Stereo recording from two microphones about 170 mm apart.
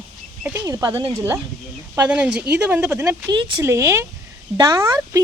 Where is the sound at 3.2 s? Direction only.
25° right (ahead or behind).